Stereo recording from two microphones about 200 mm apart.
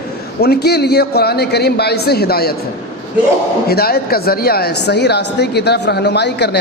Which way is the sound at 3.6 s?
50° left (ahead or behind).